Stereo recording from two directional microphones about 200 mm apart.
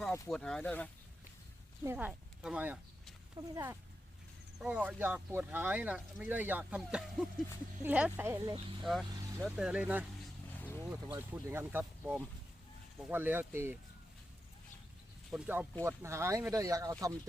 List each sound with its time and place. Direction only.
0.1 s speech: 5° left (ahead or behind)
1.8 s speech: 10° right (ahead or behind)
8.8 s speech: centre (ahead or behind)
10.5 s vehicle: 10° left (ahead or behind)
10.8 s speech: 10° right (ahead or behind)
15.3 s speech: 10° right (ahead or behind)